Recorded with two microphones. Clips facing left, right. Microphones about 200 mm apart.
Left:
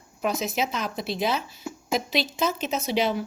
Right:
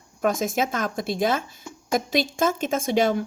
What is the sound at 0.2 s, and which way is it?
A woman's voice, 50° right (ahead or behind).